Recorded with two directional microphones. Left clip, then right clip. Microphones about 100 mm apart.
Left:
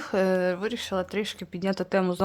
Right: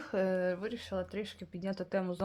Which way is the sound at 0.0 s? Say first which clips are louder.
Left 8 dB; 30° left (ahead or behind).